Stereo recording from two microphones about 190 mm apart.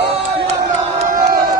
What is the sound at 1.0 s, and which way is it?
Crowd, 45° right (ahead or behind).